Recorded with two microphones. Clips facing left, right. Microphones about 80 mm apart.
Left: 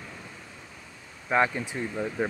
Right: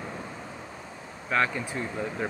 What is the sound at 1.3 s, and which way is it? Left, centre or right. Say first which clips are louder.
Speech: left 2 dB; centre.